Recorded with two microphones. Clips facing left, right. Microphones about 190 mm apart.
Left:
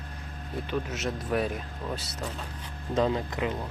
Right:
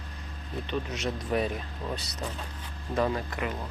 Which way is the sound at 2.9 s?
20° left (ahead or behind).